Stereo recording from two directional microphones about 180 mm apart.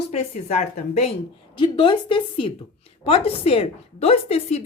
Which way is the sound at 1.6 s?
30° left (ahead or behind).